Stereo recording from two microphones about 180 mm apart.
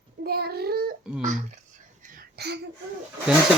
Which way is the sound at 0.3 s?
60° right (ahead or behind).